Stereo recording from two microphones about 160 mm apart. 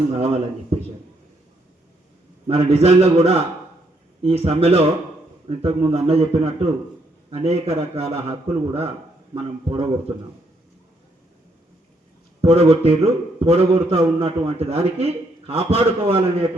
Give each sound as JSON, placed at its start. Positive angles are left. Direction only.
{"t": 0.2, "sound": "a man's voice", "side_deg": -40}
{"t": 2.5, "sound": "a man's voice", "side_deg": -40}
{"t": 12.4, "sound": "a man's voice", "side_deg": -40}